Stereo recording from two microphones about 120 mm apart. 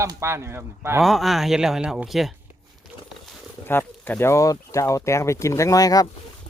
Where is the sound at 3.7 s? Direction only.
15° left (ahead or behind).